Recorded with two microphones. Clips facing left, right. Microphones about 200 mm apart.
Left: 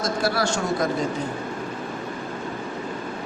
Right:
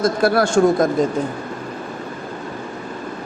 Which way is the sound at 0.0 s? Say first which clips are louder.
Right 7 dB; 55° right (ahead or behind).